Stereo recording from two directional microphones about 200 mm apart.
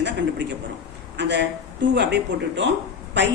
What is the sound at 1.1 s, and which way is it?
A man's voice, 60° right (ahead or behind).